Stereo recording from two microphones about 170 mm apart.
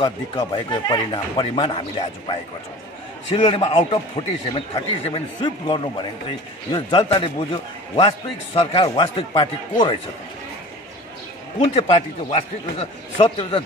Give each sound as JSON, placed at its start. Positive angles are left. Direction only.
{"t": 0.0, "sound": "speech", "side_deg": 25}
{"t": 11.6, "sound": "speech", "side_deg": 30}